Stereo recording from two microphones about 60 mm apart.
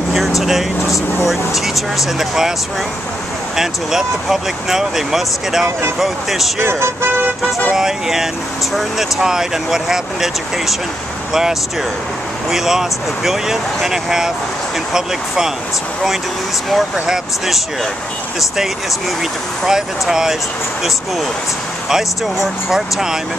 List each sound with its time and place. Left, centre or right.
0.4 s speech: centre
3.5 s speech: centre
6.6 s speech: right
7.7 s speech: centre
12.4 s speech: centre
16.7 s speech: centre
19.6 s speech: centre
21.8 s speech: centre